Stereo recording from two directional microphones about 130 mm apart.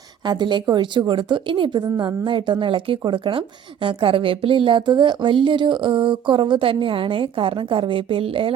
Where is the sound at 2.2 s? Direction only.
40° right (ahead or behind).